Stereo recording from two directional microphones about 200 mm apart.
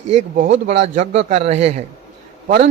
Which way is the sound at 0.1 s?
35° right (ahead or behind).